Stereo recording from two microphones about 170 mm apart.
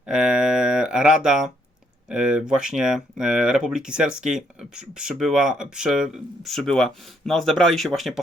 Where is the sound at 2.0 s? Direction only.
5° right (ahead or behind).